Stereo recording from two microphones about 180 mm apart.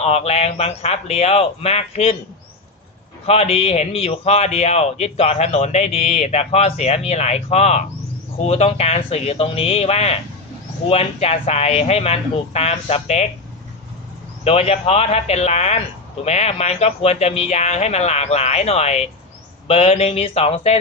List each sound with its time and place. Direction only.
0.0 s a man's voice: 35° left (ahead or behind)
3.2 s a man's voice: 35° left (ahead or behind)
14.4 s a man's voice: 35° left (ahead or behind)